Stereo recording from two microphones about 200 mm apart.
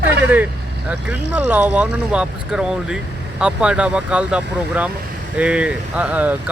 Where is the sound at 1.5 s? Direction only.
10° right (ahead or behind).